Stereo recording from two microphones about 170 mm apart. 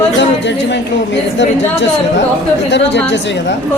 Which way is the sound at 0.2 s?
90° left.